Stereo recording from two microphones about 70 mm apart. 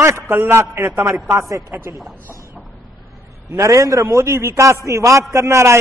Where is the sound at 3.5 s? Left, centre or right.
Right.